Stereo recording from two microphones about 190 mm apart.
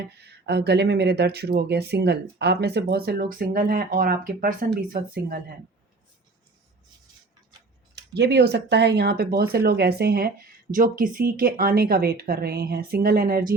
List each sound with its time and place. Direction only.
0.2 s speech: 60° right (ahead or behind)
7.9 s speech: 60° right (ahead or behind)